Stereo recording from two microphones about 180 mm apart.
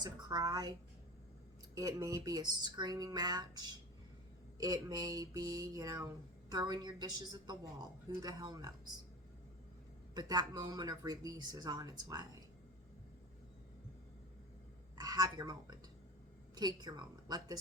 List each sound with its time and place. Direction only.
0.0 s speech: 20° right (ahead or behind)
1.7 s speech: 20° right (ahead or behind)
10.2 s speech: 20° right (ahead or behind)
14.9 s speech: 20° right (ahead or behind)